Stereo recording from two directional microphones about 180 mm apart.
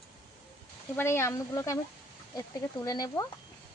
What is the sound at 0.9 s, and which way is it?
Speech, 15° left (ahead or behind).